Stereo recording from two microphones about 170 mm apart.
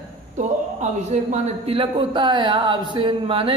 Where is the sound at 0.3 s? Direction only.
45° right (ahead or behind).